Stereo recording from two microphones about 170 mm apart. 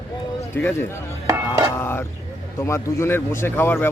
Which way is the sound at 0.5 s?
15° left (ahead or behind).